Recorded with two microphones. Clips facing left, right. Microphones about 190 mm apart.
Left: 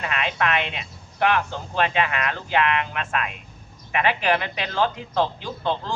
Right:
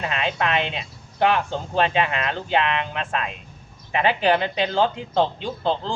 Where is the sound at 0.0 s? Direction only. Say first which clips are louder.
Right 1 dB; 25° right (ahead or behind).